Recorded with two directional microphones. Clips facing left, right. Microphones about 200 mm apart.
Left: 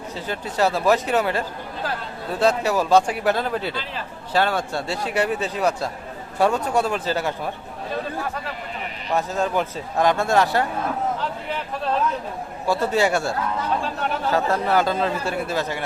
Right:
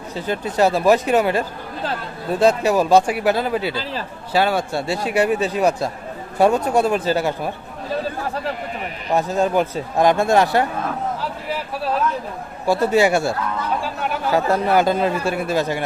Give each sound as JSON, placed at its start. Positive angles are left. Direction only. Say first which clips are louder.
{"t": 0.3, "sound": "speech", "louder": "right 4 dB", "side_deg": -15}
{"t": 8.0, "sound": "speech", "louder": "right 4 dB", "side_deg": -30}
{"t": 9.1, "sound": "speech", "louder": "right 4 dB", "side_deg": -15}